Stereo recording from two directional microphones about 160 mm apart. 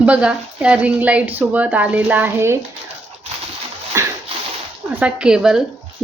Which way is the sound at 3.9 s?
20° right (ahead or behind).